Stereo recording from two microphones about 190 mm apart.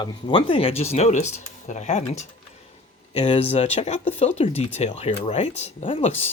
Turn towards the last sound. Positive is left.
turn(degrees=30)  # may be behind; listen again after turning